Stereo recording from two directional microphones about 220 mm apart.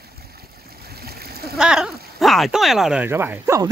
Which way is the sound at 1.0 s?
45° right (ahead or behind).